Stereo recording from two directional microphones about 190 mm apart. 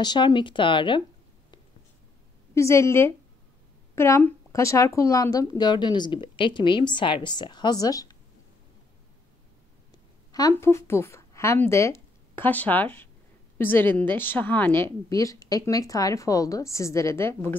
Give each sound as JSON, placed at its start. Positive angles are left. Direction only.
{"t": 0.0, "sound": "speech", "side_deg": 25}
{"t": 2.5, "sound": "a woman's voice", "side_deg": 15}
{"t": 10.3, "sound": "a woman's voice", "side_deg": 15}